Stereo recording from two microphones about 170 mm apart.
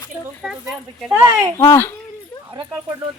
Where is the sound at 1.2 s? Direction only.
20° right (ahead or behind).